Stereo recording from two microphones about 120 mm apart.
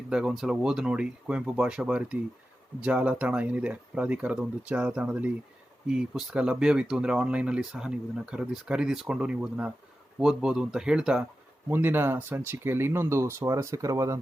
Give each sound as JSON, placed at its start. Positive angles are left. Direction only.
{"t": 0.1, "sound": "speech", "side_deg": -5}
{"t": 11.7, "sound": "speech", "side_deg": -20}